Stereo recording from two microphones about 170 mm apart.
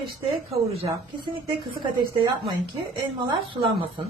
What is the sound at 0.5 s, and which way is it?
A woman's voice, 35° right (ahead or behind).